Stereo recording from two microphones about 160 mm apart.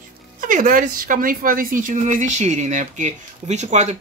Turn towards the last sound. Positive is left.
turn(degrees=-45)  # may be behind; listen again after turning